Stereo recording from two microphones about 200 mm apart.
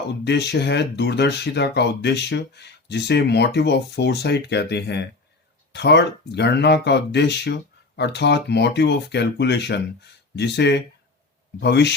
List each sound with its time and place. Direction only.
0.1 s speech: 55° left (ahead or behind)